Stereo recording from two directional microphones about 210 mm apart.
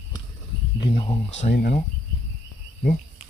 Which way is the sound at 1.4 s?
35° left (ahead or behind).